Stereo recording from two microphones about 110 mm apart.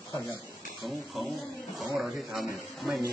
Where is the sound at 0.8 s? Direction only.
Centre (ahead or behind).